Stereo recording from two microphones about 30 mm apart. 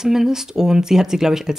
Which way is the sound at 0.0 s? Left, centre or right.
Centre.